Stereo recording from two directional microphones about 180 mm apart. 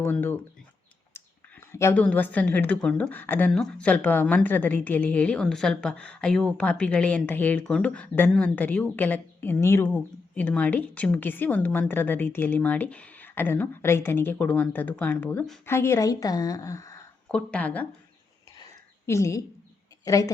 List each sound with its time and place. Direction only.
0.0 s a woman's voice: 10° left (ahead or behind)
1.7 s a woman's voice: 10° left (ahead or behind)
17.2 s a woman's voice: 5° left (ahead or behind)
19.0 s a woman's voice: 15° left (ahead or behind)